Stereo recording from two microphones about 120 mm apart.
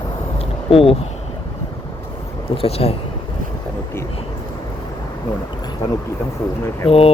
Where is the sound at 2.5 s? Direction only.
55° left (ahead or behind).